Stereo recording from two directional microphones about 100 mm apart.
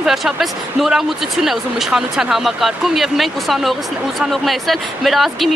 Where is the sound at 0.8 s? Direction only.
Centre (ahead or behind).